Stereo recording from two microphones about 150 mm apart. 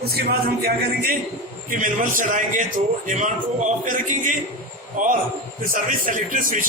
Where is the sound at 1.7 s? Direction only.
60° right (ahead or behind).